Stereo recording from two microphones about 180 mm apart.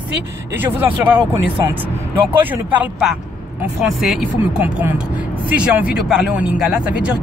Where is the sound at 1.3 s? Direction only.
15° right (ahead or behind).